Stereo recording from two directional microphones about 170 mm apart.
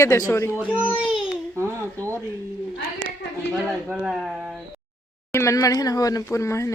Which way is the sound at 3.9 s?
5° right (ahead or behind).